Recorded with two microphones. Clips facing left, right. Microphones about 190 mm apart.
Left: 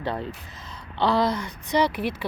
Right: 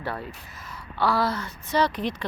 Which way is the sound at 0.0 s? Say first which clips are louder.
Left 3 dB; 20° left (ahead or behind).